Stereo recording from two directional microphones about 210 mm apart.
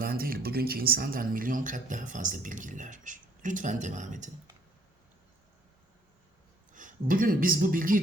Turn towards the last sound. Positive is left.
turn(degrees=-40)  # may be behind; listen again after turning